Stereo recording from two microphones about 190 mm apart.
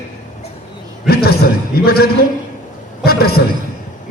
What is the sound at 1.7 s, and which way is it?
A man's voice, 55° left (ahead or behind).